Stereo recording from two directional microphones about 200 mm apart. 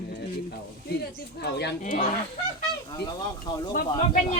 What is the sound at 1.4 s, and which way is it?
Speech, 55° left (ahead or behind).